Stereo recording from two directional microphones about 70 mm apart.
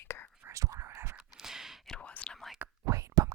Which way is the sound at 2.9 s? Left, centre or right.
Right.